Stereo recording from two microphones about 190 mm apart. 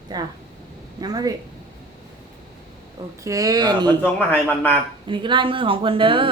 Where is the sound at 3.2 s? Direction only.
15° right (ahead or behind).